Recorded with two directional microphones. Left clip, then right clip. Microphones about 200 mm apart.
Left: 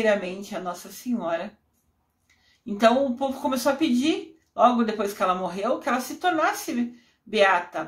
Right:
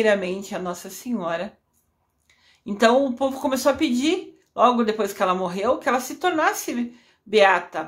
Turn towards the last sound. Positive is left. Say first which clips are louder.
# right 3 dB
turn(degrees=-25)  # may be behind; listen again after turning